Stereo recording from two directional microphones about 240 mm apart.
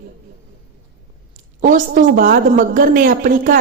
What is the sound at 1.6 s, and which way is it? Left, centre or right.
A woman's voice, right.